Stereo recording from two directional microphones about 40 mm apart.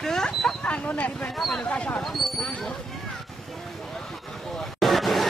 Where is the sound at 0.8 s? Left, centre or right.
Left.